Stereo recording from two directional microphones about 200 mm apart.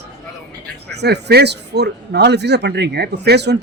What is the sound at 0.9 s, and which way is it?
Speech, 55° right (ahead or behind).